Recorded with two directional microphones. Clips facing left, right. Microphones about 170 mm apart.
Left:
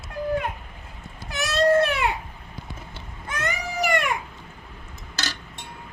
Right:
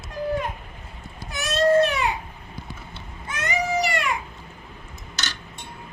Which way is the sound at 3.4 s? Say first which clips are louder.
Right 3 dB; 55° left (ahead or behind).